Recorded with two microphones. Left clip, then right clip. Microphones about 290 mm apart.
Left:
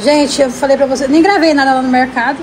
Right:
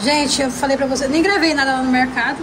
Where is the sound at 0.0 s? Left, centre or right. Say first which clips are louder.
Left 7 dB; centre.